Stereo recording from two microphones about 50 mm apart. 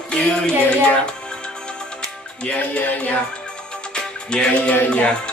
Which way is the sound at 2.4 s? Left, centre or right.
Left.